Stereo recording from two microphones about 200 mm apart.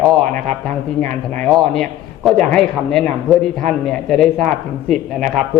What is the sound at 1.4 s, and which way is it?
A man's voice, 5° left (ahead or behind).